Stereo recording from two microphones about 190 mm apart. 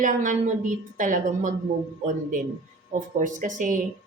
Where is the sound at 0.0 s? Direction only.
40° right (ahead or behind).